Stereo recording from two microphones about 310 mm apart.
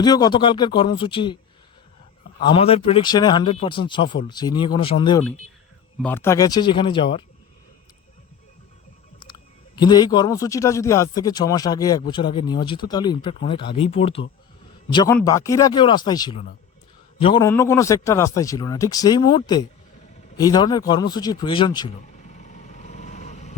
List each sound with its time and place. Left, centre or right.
0.0 s speech: centre
2.4 s speech: centre
9.7 s speech: centre
20.3 s a sound: centre